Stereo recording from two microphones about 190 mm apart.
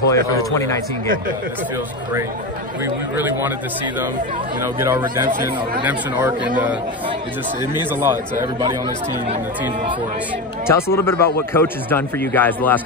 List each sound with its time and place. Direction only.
0.1 s a man's voice: 15° left (ahead or behind)
2.8 s speech: 10° right (ahead or behind)
4.7 s speech: 15° right (ahead or behind)
7.9 s speech: 10° right (ahead or behind)
10.7 s a man's voice: 15° left (ahead or behind)